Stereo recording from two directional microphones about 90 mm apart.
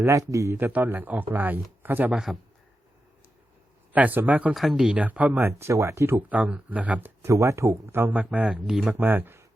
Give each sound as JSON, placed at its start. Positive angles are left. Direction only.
{"t": 0.0, "sound": "speech", "side_deg": -35}
{"t": 0.7, "sound": "speech", "side_deg": -20}
{"t": 2.1, "sound": "speech", "side_deg": -5}
{"t": 3.9, "sound": "speech", "side_deg": -20}
{"t": 4.5, "sound": "speech", "side_deg": -5}
{"t": 6.2, "sound": "speech", "side_deg": -15}
{"t": 7.2, "sound": "speech", "side_deg": -30}
{"t": 8.1, "sound": "speech", "side_deg": -15}
{"t": 8.6, "sound": "speech", "side_deg": -5}
{"t": 8.9, "sound": "speech", "side_deg": -20}